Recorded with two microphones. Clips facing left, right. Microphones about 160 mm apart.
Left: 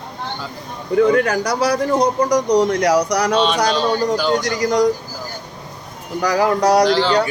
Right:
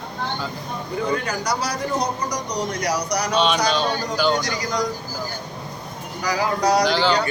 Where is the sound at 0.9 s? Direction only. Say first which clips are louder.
Left 11 dB; 70° left (ahead or behind); by 1.9 s 55° left (ahead or behind).